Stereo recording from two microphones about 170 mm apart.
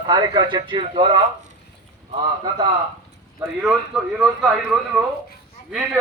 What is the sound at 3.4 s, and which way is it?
A man's voice, 5° right (ahead or behind).